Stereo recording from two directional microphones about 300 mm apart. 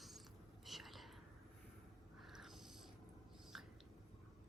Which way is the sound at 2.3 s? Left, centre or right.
Centre.